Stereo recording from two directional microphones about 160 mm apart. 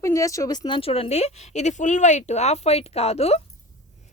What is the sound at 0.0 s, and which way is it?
A woman's voice, 20° left (ahead or behind).